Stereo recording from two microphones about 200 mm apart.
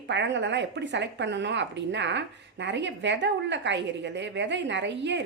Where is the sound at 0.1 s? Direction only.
60° right (ahead or behind).